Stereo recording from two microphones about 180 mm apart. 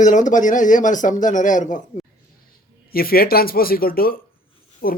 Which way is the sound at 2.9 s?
55° left (ahead or behind).